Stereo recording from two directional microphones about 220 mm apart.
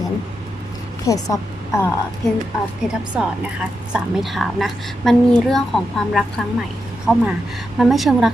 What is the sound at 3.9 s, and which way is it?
A woman's voice, centre (ahead or behind).